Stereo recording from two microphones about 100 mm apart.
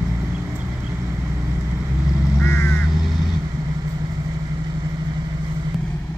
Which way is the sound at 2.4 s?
25° left (ahead or behind).